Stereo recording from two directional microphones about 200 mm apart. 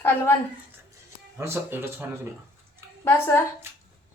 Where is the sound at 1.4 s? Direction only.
10° right (ahead or behind).